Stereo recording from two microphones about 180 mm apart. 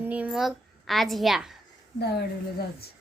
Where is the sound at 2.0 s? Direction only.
65° left (ahead or behind).